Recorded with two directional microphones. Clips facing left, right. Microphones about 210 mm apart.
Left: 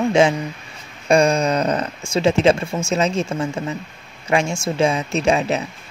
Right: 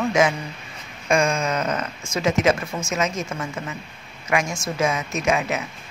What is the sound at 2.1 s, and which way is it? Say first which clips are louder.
Speech: left 4 dB; 30° left (ahead or behind).